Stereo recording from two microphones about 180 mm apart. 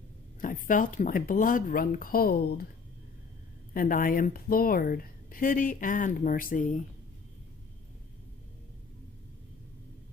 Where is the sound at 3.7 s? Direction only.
50° left (ahead or behind).